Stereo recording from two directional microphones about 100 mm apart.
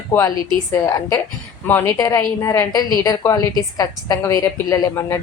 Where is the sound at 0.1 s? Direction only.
20° left (ahead or behind).